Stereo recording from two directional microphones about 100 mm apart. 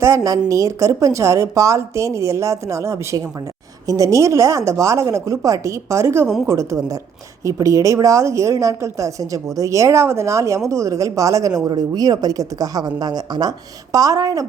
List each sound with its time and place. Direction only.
0.0 s a woman's voice: 30° right (ahead or behind)